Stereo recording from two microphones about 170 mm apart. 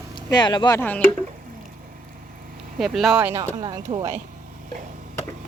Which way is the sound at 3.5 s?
30° right (ahead or behind).